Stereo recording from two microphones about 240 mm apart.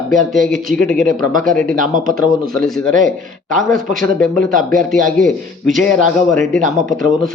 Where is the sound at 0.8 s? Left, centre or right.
Right.